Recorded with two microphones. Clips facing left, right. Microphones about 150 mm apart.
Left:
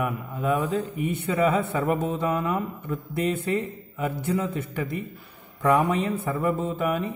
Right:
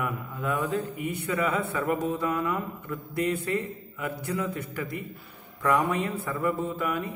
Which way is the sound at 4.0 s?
25° left (ahead or behind).